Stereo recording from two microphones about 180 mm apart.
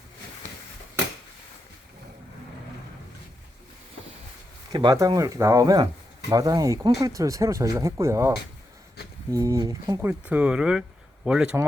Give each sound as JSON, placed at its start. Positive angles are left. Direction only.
{"t": 4.7, "sound": "speech", "side_deg": -20}
{"t": 9.0, "sound": "a sound", "side_deg": 60}
{"t": 9.3, "sound": "speech", "side_deg": -15}
{"t": 10.0, "sound": "speech", "side_deg": -10}